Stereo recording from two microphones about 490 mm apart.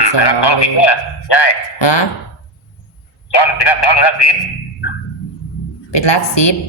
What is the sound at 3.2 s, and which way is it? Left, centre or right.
A man's voice, left.